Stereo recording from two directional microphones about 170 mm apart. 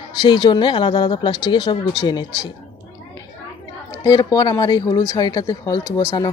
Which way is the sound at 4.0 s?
20° left (ahead or behind).